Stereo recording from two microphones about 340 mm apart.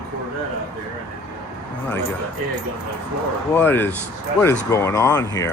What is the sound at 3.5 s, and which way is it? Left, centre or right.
Speech, centre.